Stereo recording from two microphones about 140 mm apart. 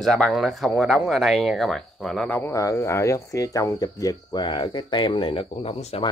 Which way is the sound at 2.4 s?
20° left (ahead or behind).